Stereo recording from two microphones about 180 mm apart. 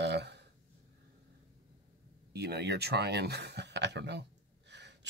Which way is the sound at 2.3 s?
65° right (ahead or behind).